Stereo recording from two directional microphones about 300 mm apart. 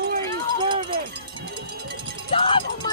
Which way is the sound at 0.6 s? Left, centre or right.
Centre.